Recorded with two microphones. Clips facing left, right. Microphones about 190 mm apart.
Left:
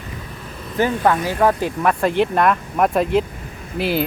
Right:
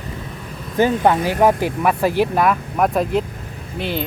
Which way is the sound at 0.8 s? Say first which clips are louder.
Right 2 dB; 20° right (ahead or behind).